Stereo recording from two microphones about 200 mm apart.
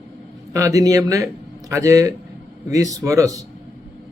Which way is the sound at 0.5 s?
15° right (ahead or behind).